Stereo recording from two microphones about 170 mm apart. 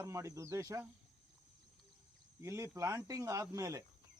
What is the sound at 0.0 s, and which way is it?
Speech, 15° right (ahead or behind).